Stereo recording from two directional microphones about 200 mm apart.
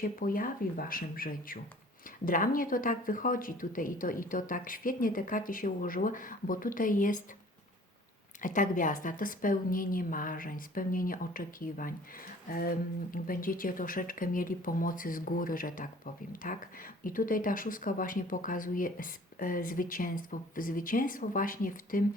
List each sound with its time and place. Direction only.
0.0 s speech: 45° left (ahead or behind)
8.4 s speech: 40° left (ahead or behind)